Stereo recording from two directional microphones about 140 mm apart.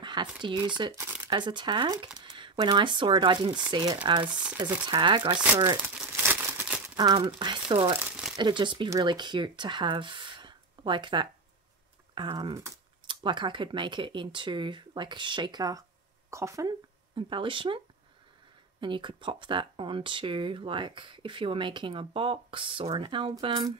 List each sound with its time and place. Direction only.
0.0 s a sound: 35° right (ahead or behind)
0.4 s speech: 35° right (ahead or behind)
0.9 s shuffling cards: 15° right (ahead or behind)
1.2 s speech: 35° right (ahead or behind)
4.3 s speech: 10° right (ahead or behind)
4.8 s speech: 35° right (ahead or behind)
5.4 s speech: 10° right (ahead or behind)
5.9 s crumpling: 15° right (ahead or behind)
7.0 s speech: 30° right (ahead or behind)
8.1 s crumpling: 5° right (ahead or behind)
8.4 s speech: 35° right (ahead or behind)
17.1 s speech: 35° right (ahead or behind)